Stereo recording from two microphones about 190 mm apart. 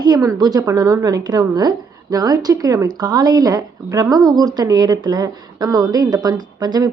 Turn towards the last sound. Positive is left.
turn(degrees=-20)  # may be behind; listen again after turning